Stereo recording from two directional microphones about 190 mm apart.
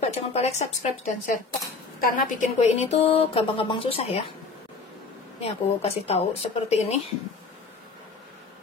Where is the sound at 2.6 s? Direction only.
35° left (ahead or behind).